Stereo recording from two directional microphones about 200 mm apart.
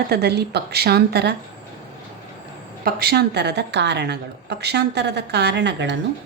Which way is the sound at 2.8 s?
50° right (ahead or behind).